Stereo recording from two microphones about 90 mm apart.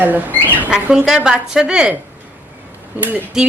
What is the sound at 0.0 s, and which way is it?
Speech, 20° right (ahead or behind).